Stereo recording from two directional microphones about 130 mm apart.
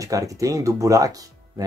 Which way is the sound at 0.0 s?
25° right (ahead or behind).